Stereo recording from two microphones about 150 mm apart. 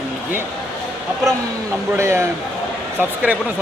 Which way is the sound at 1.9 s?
15° right (ahead or behind).